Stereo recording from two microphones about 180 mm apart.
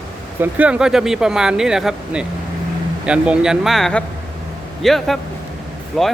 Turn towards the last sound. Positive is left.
turn(degrees=0)  # may be behind; listen again after turning